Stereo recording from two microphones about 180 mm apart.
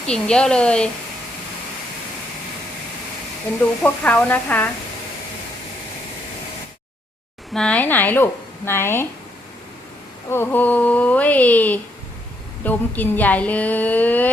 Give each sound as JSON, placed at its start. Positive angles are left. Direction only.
{"t": 0.1, "sound": "a woman's voice", "side_deg": 5}
{"t": 3.8, "sound": "a woman's voice", "side_deg": 10}
{"t": 7.5, "sound": "a woman's voice", "side_deg": 5}
{"t": 10.3, "sound": "a woman's voice", "side_deg": 10}